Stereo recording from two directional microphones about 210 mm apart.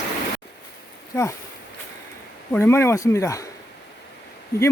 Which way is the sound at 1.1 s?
15° left (ahead or behind).